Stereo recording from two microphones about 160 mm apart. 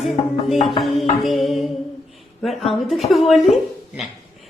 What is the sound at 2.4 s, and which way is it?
A woman's voice, centre (ahead or behind).